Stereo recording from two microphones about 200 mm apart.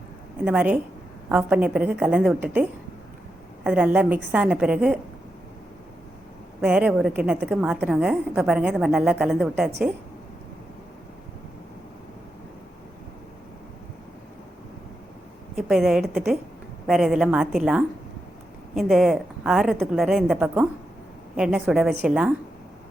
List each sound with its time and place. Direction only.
0.4 s a woman's voice: 5° right (ahead or behind)
3.6 s a woman's voice: 5° right (ahead or behind)
6.6 s a woman's voice: 5° right (ahead or behind)
15.5 s a woman's voice: centre (ahead or behind)